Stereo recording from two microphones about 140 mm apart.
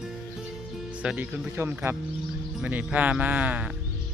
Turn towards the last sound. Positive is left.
turn(degrees=-10)  # may be behind; listen again after turning